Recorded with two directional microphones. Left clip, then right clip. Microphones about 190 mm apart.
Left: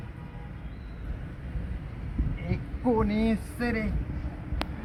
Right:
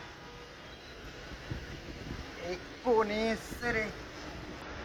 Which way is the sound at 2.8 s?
10° left (ahead or behind).